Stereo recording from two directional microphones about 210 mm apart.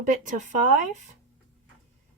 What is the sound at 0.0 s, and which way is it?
Speech, 35° right (ahead or behind).